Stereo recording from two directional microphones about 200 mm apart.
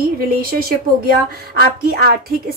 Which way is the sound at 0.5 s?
50° right (ahead or behind).